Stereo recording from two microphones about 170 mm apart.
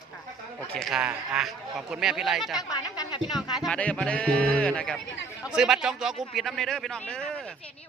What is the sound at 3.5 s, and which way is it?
Speech, 5° left (ahead or behind).